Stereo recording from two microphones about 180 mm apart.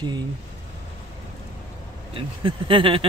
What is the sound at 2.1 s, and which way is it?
Speech, 30° right (ahead or behind).